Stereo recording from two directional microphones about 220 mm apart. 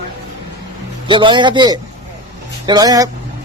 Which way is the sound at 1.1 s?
20° right (ahead or behind).